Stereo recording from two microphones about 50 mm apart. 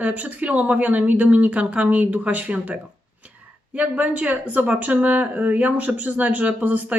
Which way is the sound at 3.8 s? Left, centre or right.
Right.